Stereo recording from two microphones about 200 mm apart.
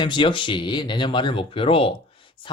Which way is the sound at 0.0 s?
25° left (ahead or behind).